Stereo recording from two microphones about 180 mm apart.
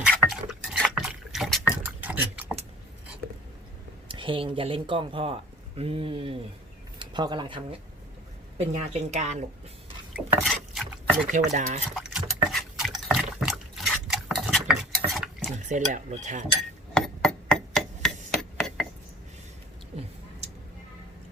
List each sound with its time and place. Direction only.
0.1 s a sound: centre (ahead or behind)
4.1 s speech: 30° right (ahead or behind)
8.7 s cutlery: 40° right (ahead or behind)
10.2 s stir: 5° right (ahead or behind)
11.3 s cutlery: 40° right (ahead or behind)
11.9 s liquid: centre (ahead or behind)
15.5 s cutlery: 40° right (ahead or behind)
16.9 s hammer: 5° left (ahead or behind)
18.3 s glass: centre (ahead or behind)